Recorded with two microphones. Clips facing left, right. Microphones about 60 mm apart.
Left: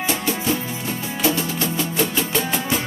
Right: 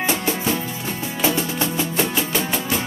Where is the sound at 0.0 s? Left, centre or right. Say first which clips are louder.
Right 1 dB; right.